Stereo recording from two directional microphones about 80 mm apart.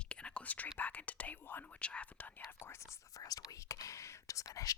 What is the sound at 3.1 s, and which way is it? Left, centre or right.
Whispering, left.